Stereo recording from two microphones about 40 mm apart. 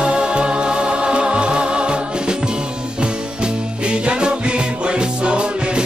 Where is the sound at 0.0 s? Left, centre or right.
Right.